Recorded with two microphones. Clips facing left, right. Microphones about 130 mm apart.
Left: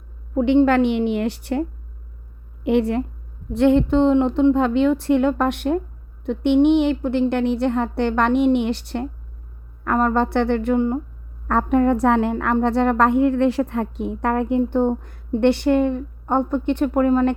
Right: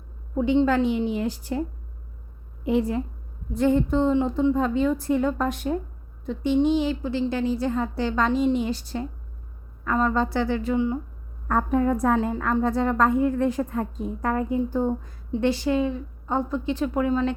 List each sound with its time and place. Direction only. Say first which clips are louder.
0.3 s a woman's voice: left 5 dB; 65° left (ahead or behind)
2.6 s a woman's voice: left 4 dB; 70° left (ahead or behind); by 11.0 s 55° left (ahead or behind)
11.4 s a woman's voice: left 5 dB; 75° left (ahead or behind); by 17.3 s 55° left (ahead or behind)